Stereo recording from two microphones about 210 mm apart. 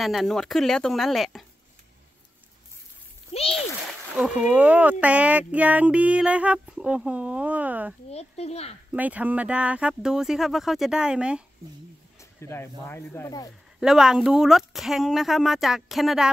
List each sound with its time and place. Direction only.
0.0 s speech: centre (ahead or behind)
3.3 s a child's voice: 30° left (ahead or behind)
4.2 s speech: 5° right (ahead or behind)
5.0 s a sound: 5° right (ahead or behind)
8.1 s a child's voice: 30° left (ahead or behind)
8.9 s speech: 5° right (ahead or behind)
12.2 s speech: 15° left (ahead or behind)
13.7 s speech: centre (ahead or behind)